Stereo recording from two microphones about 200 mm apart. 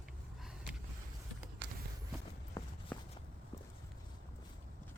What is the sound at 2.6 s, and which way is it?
Walk, 15° left (ahead or behind).